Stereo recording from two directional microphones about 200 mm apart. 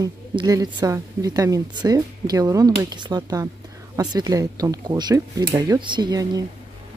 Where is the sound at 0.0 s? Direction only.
20° right (ahead or behind).